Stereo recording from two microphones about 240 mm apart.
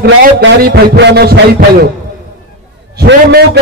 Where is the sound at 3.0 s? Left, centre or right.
Right.